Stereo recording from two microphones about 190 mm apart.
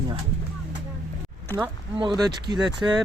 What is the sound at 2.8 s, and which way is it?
Speech, 15° right (ahead or behind).